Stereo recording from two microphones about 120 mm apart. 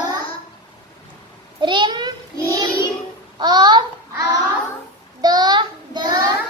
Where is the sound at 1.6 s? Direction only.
40° right (ahead or behind).